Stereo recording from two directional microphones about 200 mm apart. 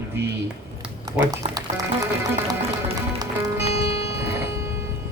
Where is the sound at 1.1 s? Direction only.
20° right (ahead or behind).